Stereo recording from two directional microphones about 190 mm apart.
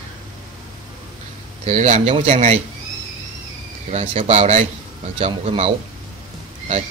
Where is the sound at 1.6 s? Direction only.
35° right (ahead or behind).